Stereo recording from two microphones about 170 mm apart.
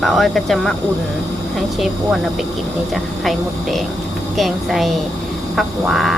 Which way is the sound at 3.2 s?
Centre (ahead or behind).